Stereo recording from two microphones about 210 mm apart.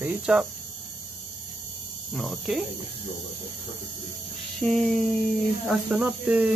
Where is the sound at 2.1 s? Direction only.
Centre (ahead or behind).